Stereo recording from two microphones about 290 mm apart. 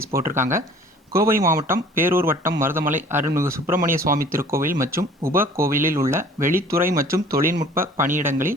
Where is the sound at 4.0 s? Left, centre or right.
Right.